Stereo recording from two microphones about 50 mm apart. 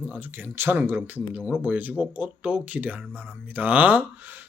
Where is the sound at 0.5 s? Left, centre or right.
Right.